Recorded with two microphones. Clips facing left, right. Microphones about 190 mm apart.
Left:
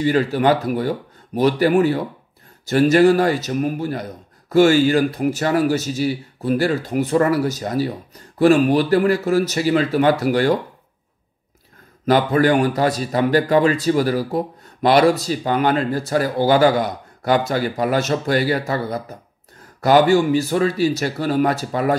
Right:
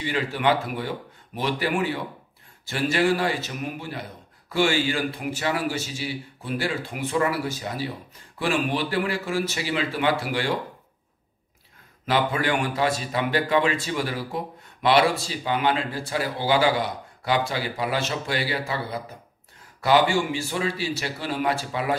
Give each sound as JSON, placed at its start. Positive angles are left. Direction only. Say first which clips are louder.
{"t": 0.0, "sound": "speech", "louder": "left 8 dB", "side_deg": 40}
{"t": 12.1, "sound": "speech", "louder": "left 8 dB", "side_deg": 40}